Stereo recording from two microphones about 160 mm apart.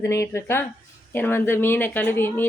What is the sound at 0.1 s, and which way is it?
Speech, 20° left (ahead or behind).